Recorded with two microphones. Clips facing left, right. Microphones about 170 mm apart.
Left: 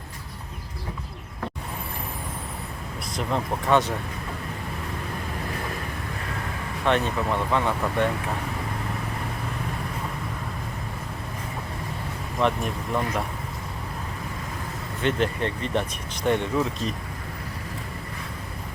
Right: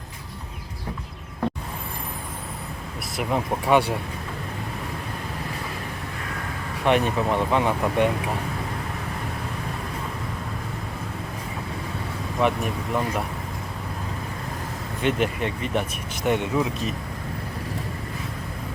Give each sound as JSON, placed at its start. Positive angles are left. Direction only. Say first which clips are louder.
{"t": 3.2, "sound": "speech", "louder": "right 2 dB", "side_deg": -10}
{"t": 6.8, "sound": "speech", "louder": "right 3 dB", "side_deg": -15}
{"t": 12.4, "sound": "speech", "louder": "right 1 dB", "side_deg": -5}
{"t": 15.0, "sound": "speech", "louder": "right 1 dB", "side_deg": -10}